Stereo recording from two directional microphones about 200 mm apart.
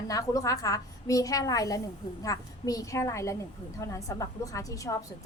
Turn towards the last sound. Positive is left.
turn(degrees=15)  # may be behind; listen again after turning